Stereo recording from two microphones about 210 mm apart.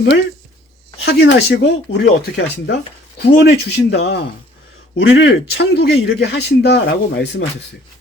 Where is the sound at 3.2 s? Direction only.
50° left (ahead or behind).